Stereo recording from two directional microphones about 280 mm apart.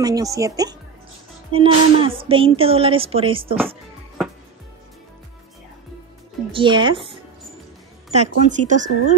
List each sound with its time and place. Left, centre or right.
0.0 s a woman's voice: centre
6.5 s a woman's voice: centre